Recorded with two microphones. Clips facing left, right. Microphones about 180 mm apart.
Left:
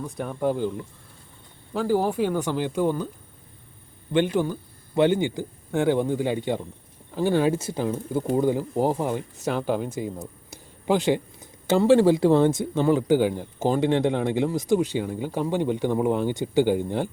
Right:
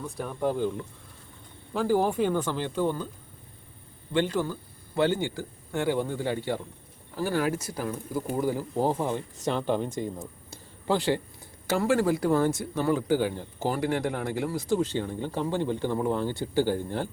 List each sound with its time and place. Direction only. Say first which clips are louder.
0.2 s speech: left 2 dB; 5° left (ahead or behind)
1.7 s speech: left 1 dB; 10° left (ahead or behind)
4.1 s speech: left 4 dB; 15° left (ahead or behind)
10.5 s a sound: left 4 dB; 15° left (ahead or behind)
12.2 s speech: left 6 dB; 25° left (ahead or behind)